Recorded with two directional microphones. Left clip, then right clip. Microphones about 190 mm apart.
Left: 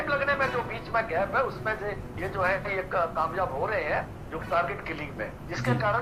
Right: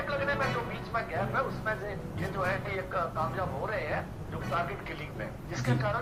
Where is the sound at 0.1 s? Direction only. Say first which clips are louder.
Left 5 dB; 45° left (ahead or behind).